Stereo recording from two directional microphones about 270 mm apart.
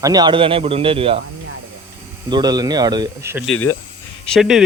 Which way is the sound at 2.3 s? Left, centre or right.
Centre.